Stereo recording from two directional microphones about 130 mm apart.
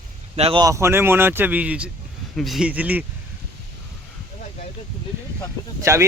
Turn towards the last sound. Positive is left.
turn(degrees=-20)  # may be behind; listen again after turning